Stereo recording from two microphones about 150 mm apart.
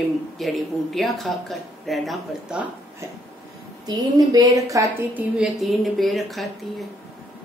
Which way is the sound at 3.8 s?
25° right (ahead or behind).